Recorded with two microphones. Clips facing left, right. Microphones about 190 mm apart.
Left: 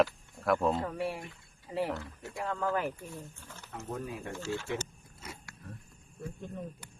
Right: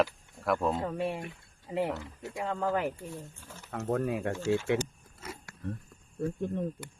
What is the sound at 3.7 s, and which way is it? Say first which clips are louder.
Speech: right 9 dB; 70° right (ahead or behind).